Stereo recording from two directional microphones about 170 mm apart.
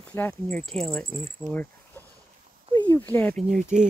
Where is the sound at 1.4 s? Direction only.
10° left (ahead or behind).